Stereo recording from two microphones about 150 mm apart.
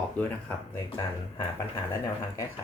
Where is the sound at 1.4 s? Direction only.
35° left (ahead or behind).